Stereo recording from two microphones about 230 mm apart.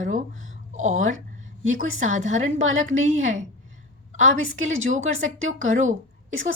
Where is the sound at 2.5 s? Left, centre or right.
Right.